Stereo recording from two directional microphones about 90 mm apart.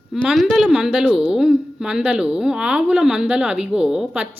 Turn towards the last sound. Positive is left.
turn(degrees=-5)  # may be behind; listen again after turning